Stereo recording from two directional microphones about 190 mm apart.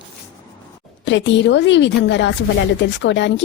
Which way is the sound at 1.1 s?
75° left (ahead or behind).